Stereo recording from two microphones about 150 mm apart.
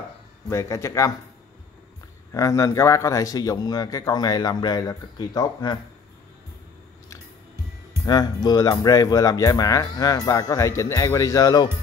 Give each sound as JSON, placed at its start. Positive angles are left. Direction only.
{"t": 0.5, "sound": "speech", "side_deg": 20}
{"t": 2.3, "sound": "speech", "side_deg": 20}
{"t": 8.0, "sound": "speech", "side_deg": 25}